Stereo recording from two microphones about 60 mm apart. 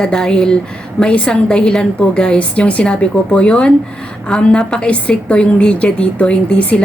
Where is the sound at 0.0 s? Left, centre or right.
Centre.